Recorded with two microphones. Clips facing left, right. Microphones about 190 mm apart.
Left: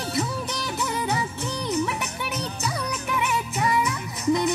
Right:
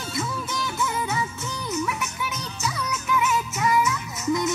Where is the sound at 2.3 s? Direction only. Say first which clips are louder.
Left 2 dB; 35° left (ahead or behind).